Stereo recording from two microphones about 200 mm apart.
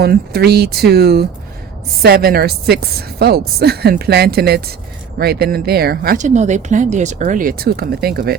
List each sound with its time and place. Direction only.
0.0 s speech: 55° right (ahead or behind)